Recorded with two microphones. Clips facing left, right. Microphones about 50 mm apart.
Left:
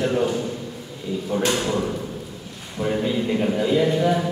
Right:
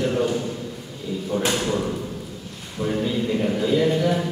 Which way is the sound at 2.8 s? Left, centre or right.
Centre.